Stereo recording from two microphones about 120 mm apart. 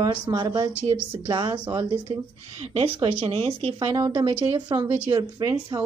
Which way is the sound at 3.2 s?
50° right (ahead or behind).